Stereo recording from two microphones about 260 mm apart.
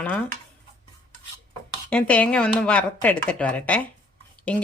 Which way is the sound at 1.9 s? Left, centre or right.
Centre.